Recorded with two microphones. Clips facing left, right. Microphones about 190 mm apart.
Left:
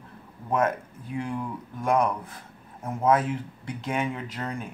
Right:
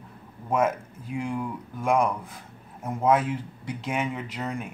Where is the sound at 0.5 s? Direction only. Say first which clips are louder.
Right 1 dB; 10° right (ahead or behind).